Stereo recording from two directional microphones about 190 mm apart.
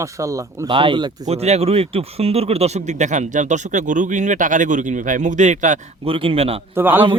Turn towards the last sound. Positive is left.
turn(degrees=-10)  # may be behind; listen again after turning